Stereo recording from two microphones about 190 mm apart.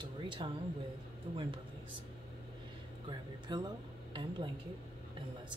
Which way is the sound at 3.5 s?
20° right (ahead or behind).